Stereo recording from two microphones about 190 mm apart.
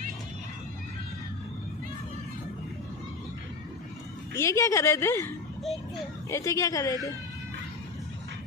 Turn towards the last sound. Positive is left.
turn(degrees=20)  # may be behind; listen again after turning